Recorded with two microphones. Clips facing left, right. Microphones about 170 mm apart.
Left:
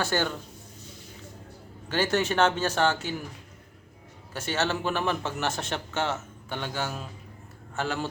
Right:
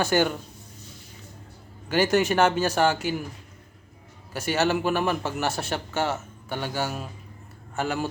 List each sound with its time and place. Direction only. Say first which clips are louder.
0.0 s a man's voice: right 5 dB; 15° right (ahead or behind)
1.9 s a man's voice: right 4 dB; 15° right (ahead or behind)
4.4 s a man's voice: right 5 dB; 10° right (ahead or behind)